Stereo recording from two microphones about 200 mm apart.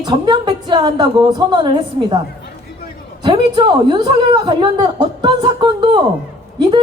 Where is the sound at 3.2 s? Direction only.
25° right (ahead or behind).